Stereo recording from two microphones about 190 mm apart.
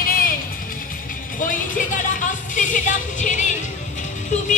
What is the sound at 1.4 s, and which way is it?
Speech, 45° left (ahead or behind).